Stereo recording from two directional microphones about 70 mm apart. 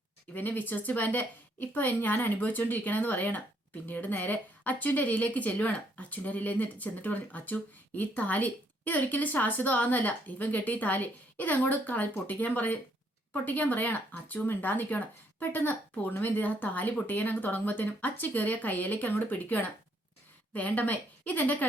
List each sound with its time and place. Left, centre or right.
0.3 s a woman's voice: left